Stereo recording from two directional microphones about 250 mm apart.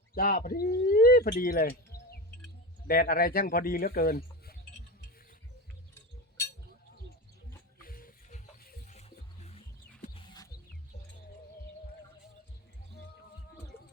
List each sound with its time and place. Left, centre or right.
0.1 s speech: left
5.9 s chink: centre
7.9 s music: left
10.0 s a sound: centre